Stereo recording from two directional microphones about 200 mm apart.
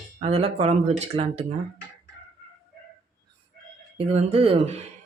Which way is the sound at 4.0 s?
30° right (ahead or behind).